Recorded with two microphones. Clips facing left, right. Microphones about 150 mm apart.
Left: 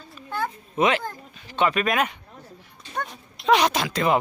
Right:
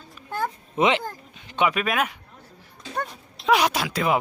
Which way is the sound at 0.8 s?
25° right (ahead or behind).